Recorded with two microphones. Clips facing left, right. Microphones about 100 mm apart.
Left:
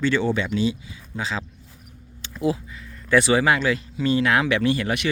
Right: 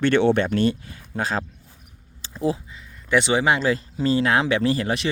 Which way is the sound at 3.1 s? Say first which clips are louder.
Left 1 dB; 20° right (ahead or behind).